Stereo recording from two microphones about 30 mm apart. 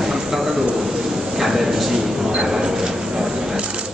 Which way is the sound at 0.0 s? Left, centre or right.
Centre.